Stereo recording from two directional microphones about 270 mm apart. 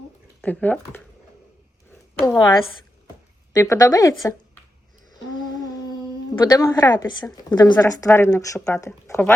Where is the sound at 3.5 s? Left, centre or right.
Centre.